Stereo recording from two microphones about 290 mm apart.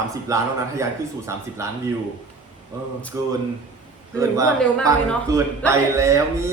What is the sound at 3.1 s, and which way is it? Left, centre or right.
Speech, centre.